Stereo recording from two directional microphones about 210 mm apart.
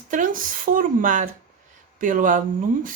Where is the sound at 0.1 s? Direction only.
40° right (ahead or behind).